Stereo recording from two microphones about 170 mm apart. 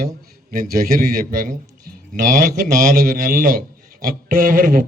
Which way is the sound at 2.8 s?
55° right (ahead or behind).